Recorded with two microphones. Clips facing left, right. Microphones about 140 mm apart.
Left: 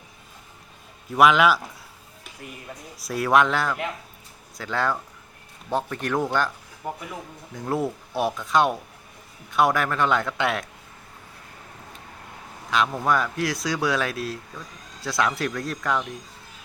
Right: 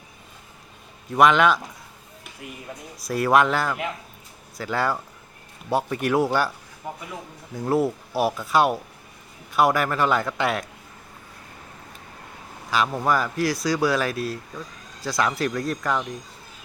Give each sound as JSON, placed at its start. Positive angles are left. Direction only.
{"t": 1.1, "sound": "speech", "side_deg": 0}
{"t": 3.0, "sound": "speech", "side_deg": 0}
{"t": 7.6, "sound": "speech", "side_deg": -5}
{"t": 12.7, "sound": "speech", "side_deg": 0}